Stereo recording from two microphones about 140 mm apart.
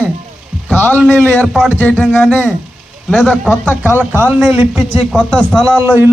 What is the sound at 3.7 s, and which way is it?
Speech, 15° right (ahead or behind).